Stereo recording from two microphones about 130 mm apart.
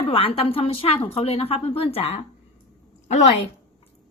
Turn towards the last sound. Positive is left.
turn(degrees=65)  # may be behind; listen again after turning